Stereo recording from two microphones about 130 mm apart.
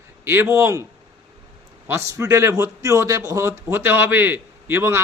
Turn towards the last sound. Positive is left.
turn(degrees=-20)  # may be behind; listen again after turning